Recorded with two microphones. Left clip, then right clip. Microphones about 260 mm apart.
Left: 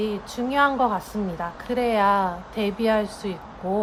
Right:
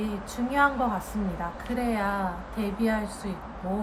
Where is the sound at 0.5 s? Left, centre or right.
Centre.